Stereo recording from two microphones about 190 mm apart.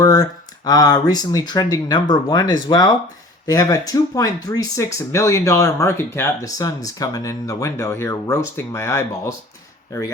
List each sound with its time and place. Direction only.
0.0 s speech: 20° left (ahead or behind)